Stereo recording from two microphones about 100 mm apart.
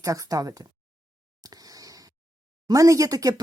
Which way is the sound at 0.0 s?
35° right (ahead or behind).